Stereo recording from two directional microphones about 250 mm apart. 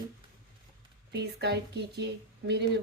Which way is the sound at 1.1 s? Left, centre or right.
Right.